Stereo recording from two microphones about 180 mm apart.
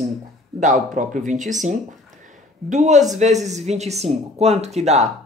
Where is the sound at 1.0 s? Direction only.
45° right (ahead or behind).